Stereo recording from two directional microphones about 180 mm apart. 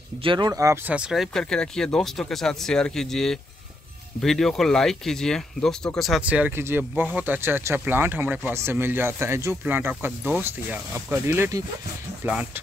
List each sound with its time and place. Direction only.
0.2 s speech: 25° right (ahead or behind)
0.9 s speech: 5° right (ahead or behind)